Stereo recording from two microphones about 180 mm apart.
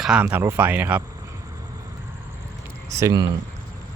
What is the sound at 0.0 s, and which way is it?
Speech, 5° right (ahead or behind).